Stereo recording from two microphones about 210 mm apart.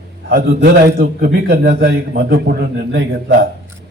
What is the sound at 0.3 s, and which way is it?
A man's voice, 45° right (ahead or behind).